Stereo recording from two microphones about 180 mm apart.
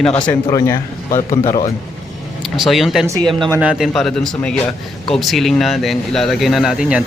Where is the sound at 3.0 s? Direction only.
20° right (ahead or behind).